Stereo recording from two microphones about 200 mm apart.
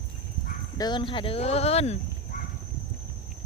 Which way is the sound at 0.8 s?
20° left (ahead or behind).